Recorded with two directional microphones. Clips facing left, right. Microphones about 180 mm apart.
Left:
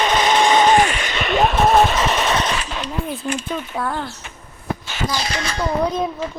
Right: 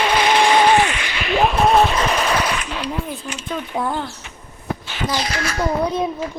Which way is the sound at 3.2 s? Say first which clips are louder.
Left 7 dB; 30° left (ahead or behind).